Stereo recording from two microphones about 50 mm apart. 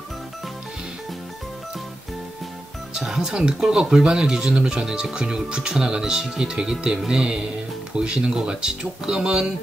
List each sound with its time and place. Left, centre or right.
2.9 s speech: centre